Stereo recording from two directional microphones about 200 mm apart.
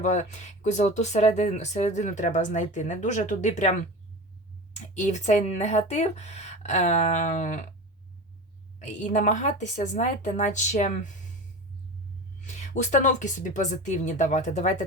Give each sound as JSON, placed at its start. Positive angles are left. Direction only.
{"t": 0.0, "sound": "speech", "side_deg": 35}
{"t": 8.8, "sound": "speech", "side_deg": 35}
{"t": 12.4, "sound": "speech", "side_deg": 35}